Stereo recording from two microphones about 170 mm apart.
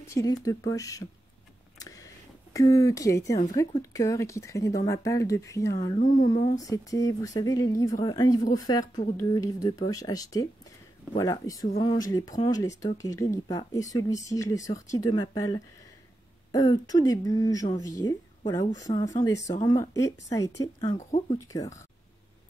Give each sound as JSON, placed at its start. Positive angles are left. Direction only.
{"t": 0.0, "sound": "speech", "side_deg": 20}
{"t": 1.8, "sound": "a sound", "side_deg": 20}
{"t": 2.5, "sound": "speech", "side_deg": 20}